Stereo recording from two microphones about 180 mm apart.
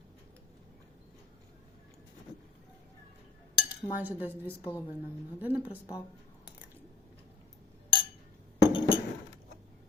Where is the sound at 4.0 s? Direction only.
10° right (ahead or behind).